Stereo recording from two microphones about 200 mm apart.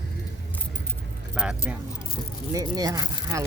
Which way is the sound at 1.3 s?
5° right (ahead or behind).